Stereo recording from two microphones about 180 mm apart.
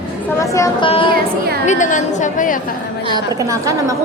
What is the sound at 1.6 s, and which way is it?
Speech, 45° left (ahead or behind).